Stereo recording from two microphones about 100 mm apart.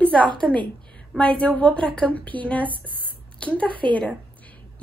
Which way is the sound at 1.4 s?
10° left (ahead or behind).